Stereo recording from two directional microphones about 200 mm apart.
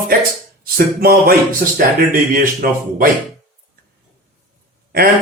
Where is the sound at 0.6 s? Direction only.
50° right (ahead or behind).